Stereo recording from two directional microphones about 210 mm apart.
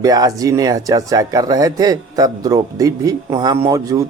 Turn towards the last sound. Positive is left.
turn(degrees=-15)  # may be behind; listen again after turning